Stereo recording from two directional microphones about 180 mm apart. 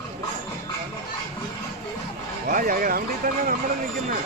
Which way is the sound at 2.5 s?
50° right (ahead or behind).